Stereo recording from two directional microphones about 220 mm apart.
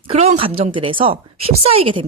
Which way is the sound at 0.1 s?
30° right (ahead or behind).